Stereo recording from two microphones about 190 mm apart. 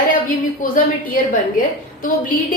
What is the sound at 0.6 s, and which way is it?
Speech, 45° left (ahead or behind).